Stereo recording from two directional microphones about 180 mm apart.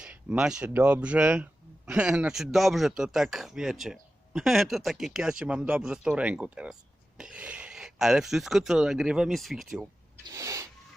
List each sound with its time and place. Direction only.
0.0 s speech: 5° right (ahead or behind)
10.3 s speech: 15° right (ahead or behind)